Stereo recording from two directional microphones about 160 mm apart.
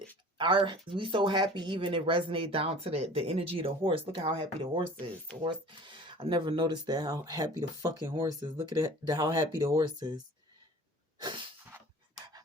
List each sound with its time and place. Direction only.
0.3 s speech: 30° right (ahead or behind)
11.2 s sneeze: 30° right (ahead or behind)